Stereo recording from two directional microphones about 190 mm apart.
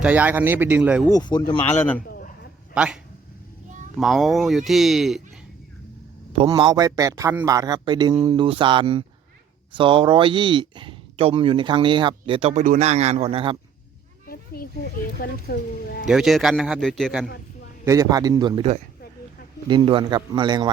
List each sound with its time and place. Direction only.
0.0 s speech: 10° right (ahead or behind)
1.1 s speech: 20° left (ahead or behind)
1.7 s a man's voice: 10° left (ahead or behind)
2.0 s a sound: 50° left (ahead or behind)
2.7 s speech: 5° right (ahead or behind)
6.5 s speech: 20° right (ahead or behind)
14.3 s a sound: 50° left (ahead or behind)
15.2 s speech: 50° left (ahead or behind)
16.0 s speech: centre (ahead or behind)
17.8 s speech: 15° right (ahead or behind)